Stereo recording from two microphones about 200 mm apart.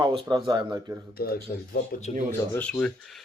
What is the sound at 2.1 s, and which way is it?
Speech, 35° left (ahead or behind).